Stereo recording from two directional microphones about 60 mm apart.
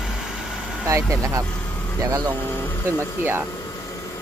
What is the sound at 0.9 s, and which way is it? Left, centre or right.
Speech, right.